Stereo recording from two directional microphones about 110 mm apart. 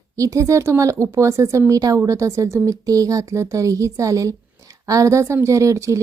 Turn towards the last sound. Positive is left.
turn(degrees=-30)  # may be behind; listen again after turning